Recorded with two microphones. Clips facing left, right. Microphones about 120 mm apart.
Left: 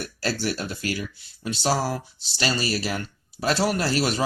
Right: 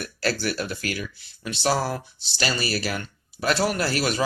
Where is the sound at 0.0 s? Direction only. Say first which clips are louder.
Right 1 dB; 30° left (ahead or behind).